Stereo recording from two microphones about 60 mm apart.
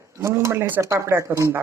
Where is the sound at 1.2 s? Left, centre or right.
Right.